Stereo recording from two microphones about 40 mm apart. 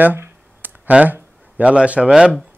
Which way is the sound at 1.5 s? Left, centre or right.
Right.